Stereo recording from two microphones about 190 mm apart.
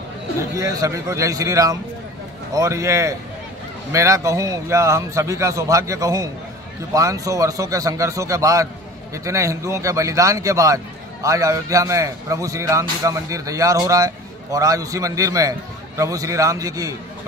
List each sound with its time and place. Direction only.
0.4 s a man's voice: 15° right (ahead or behind)